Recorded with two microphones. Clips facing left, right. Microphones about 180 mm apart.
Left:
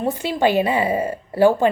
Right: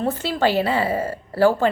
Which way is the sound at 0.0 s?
15° left (ahead or behind).